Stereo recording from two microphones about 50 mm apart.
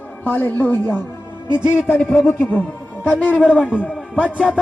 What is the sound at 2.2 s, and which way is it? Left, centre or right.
Speech, left.